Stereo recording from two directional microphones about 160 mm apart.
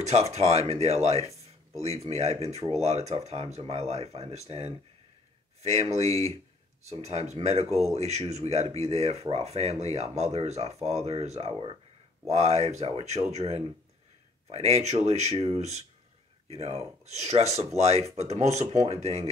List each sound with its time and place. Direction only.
0.0 s speech: 45° right (ahead or behind)